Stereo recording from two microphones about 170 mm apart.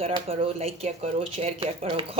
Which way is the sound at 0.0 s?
35° right (ahead or behind).